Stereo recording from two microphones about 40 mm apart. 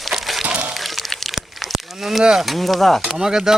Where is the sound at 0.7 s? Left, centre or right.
Centre.